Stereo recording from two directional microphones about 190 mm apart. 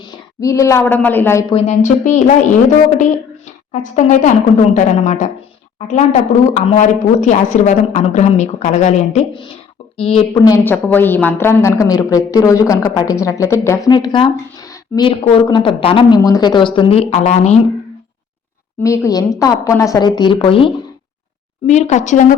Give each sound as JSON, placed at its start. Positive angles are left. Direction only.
{"t": 0.0, "sound": "a woman's voice", "side_deg": 15}
{"t": 1.5, "sound": "a woman's voice", "side_deg": 35}
{"t": 3.7, "sound": "a woman's voice", "side_deg": 40}
{"t": 10.3, "sound": "a woman's voice", "side_deg": 15}
{"t": 18.8, "sound": "speech", "side_deg": 15}
{"t": 21.7, "sound": "a woman's voice", "side_deg": 40}